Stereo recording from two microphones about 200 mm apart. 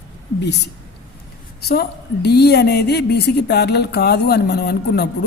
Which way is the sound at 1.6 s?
50° left (ahead or behind).